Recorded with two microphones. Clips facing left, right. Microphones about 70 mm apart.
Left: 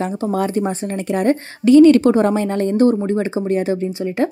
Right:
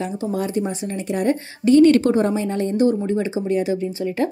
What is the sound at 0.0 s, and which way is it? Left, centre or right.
Speech, left.